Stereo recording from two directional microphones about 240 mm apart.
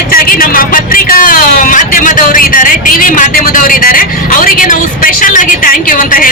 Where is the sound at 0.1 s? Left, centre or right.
Left.